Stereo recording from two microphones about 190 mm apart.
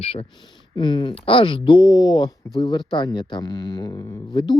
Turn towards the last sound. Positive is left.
turn(degrees=20)  # may be behind; listen again after turning